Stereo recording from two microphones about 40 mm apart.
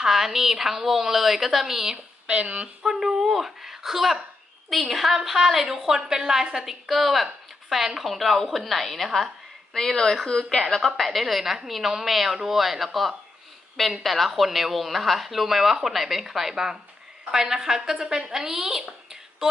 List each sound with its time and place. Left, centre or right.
0.0 s a woman's voice: centre
2.2 s speech: right
2.8 s a woman's voice: centre
9.7 s a woman's voice: centre
10.6 s a woman's voice: centre
11.0 s a woman's voice: centre